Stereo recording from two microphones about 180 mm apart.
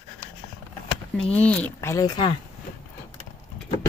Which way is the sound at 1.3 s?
5° left (ahead or behind).